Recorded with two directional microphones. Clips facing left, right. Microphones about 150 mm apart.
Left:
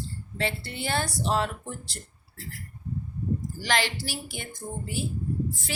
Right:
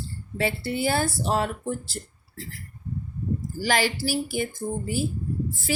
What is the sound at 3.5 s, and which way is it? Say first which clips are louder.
Speech: right 5 dB; 5° right (ahead or behind).